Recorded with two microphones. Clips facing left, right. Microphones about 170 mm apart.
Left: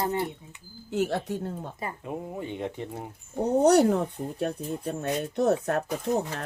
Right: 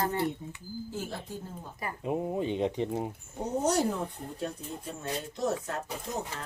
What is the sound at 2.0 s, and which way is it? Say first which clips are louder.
Speech: right 7 dB; 20° right (ahead or behind).